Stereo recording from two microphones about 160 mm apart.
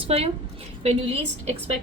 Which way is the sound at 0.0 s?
35° right (ahead or behind).